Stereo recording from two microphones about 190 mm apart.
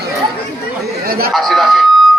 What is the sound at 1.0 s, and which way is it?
Speech, 50° right (ahead or behind).